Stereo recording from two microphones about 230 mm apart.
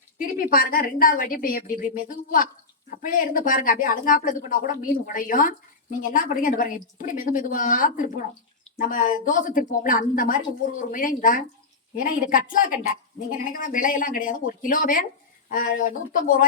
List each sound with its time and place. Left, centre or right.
0.2 s speech: left